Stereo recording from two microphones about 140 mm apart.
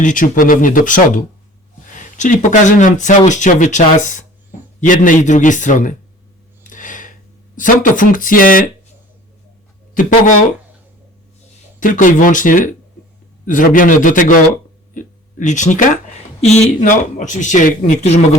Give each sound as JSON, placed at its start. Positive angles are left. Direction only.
{"t": 0.0, "sound": "speech", "side_deg": 70}
{"t": 6.7, "sound": "a sound", "side_deg": 70}
{"t": 9.9, "sound": "speech", "side_deg": 70}
{"t": 11.8, "sound": "speech", "side_deg": 70}